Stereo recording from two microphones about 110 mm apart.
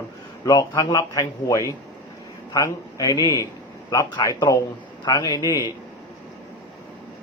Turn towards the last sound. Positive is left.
turn(degrees=40)  # may be behind; listen again after turning